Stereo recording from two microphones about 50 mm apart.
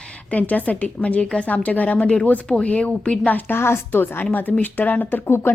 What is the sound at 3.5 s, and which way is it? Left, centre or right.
Speech, left.